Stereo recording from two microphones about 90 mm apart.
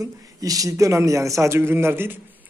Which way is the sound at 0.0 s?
40° right (ahead or behind).